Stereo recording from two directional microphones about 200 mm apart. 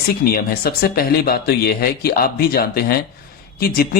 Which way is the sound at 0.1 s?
50° left (ahead or behind).